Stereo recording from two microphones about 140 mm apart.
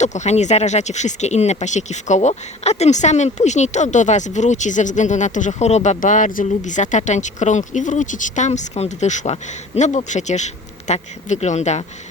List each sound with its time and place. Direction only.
0.0 s speech: 55° left (ahead or behind)